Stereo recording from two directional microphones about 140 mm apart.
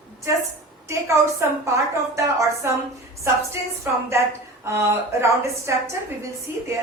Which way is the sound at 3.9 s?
15° right (ahead or behind).